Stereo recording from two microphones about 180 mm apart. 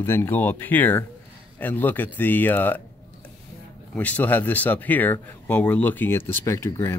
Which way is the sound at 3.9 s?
10° left (ahead or behind).